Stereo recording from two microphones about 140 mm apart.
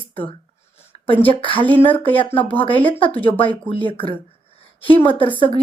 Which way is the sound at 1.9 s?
10° left (ahead or behind).